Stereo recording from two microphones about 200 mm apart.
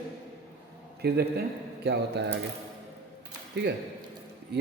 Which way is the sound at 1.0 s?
55° right (ahead or behind).